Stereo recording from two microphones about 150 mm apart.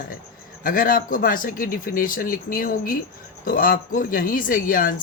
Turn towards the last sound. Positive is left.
turn(degrees=70)  # may be behind; listen again after turning